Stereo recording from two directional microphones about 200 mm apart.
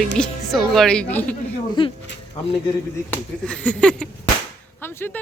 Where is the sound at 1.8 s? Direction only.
25° left (ahead or behind).